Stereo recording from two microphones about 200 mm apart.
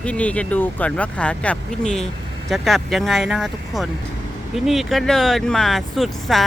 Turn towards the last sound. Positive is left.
turn(degrees=0)  # may be behind; listen again after turning